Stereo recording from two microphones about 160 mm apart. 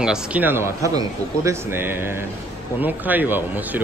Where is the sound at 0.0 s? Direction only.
5° right (ahead or behind).